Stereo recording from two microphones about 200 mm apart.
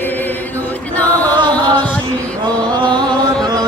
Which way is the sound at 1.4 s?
20° right (ahead or behind).